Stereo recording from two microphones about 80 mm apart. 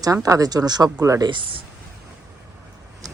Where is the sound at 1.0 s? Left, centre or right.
Right.